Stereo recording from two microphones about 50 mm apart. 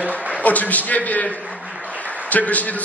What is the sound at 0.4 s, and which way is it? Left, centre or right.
A man's voice, left.